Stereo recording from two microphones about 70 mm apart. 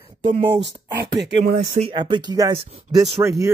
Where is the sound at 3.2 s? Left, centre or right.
Right.